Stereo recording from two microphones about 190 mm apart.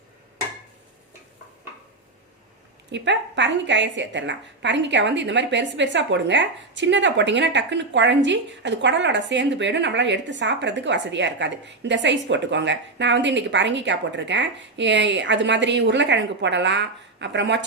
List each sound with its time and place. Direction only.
2.9 s a woman's voice: 70° right (ahead or behind)